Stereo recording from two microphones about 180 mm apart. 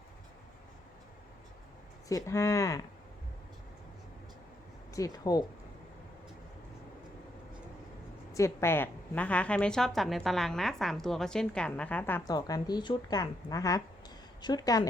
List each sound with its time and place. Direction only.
2.0 s speech: 15° left (ahead or behind)
4.9 s a woman's voice: 20° left (ahead or behind)
8.3 s a woman's voice: 15° left (ahead or behind)